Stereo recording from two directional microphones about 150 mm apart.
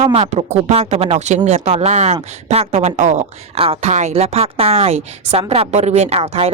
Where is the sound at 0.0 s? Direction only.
50° right (ahead or behind).